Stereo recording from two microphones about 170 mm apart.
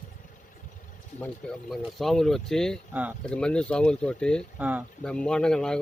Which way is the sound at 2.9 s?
10° right (ahead or behind).